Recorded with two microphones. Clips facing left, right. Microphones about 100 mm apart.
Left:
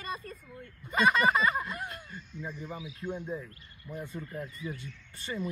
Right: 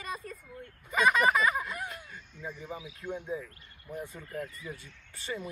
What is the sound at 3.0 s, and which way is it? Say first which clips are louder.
Speech: left 1 dB; centre (ahead or behind).